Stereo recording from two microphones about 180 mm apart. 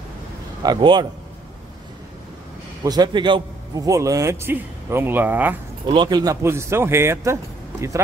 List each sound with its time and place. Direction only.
0.6 s a man's voice: 25° right (ahead or behind)
2.8 s a man's voice: 20° right (ahead or behind)
5.9 s a man's voice: 25° right (ahead or behind)